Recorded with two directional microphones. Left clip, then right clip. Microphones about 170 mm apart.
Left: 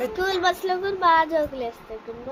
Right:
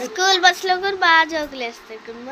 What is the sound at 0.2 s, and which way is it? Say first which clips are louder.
A child's voice: right 9 dB; 5° right (ahead or behind).